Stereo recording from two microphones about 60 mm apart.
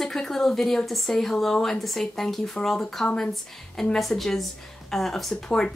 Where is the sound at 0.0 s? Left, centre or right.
Centre.